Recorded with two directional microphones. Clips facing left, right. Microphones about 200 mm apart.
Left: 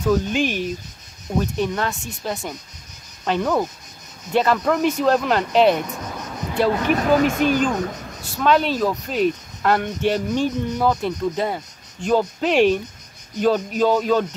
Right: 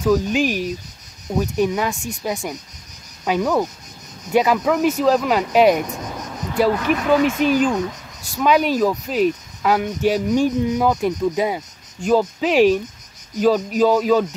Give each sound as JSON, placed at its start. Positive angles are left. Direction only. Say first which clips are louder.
{"t": 0.0, "sound": "speech", "louder": "right 2 dB", "side_deg": -5}
{"t": 6.8, "sound": "speech", "louder": "even", "side_deg": 40}
{"t": 8.4, "sound": "speech", "louder": "right 2 dB", "side_deg": -10}